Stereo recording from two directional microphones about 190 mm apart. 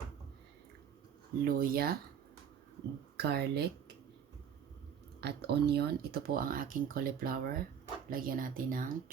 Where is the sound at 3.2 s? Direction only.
60° right (ahead or behind).